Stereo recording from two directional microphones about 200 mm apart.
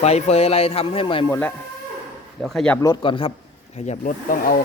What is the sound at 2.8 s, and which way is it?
Speech, 20° left (ahead or behind).